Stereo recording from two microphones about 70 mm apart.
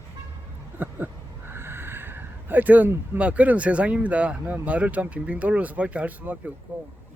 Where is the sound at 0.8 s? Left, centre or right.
Right.